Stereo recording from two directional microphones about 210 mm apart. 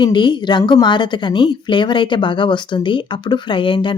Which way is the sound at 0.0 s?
20° left (ahead or behind).